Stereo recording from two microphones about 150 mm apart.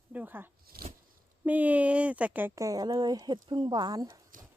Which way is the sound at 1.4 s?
10° right (ahead or behind).